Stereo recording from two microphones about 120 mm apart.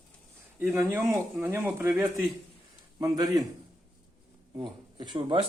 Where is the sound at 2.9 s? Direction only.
30° right (ahead or behind).